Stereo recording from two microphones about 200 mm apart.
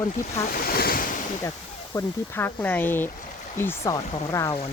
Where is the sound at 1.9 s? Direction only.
10° left (ahead or behind).